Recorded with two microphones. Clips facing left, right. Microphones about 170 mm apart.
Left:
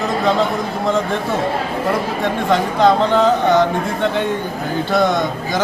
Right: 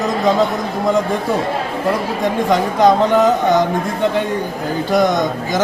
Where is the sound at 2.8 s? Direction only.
15° right (ahead or behind).